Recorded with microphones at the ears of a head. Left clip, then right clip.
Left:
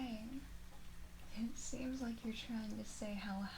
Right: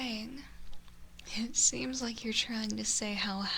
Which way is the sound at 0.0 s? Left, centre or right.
Right.